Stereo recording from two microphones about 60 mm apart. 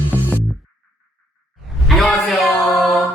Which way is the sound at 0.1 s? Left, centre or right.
Left.